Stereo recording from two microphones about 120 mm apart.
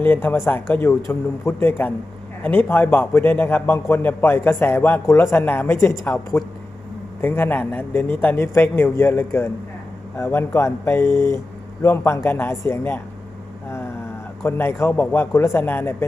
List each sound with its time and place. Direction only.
0.0 s a man's voice: 15° left (ahead or behind)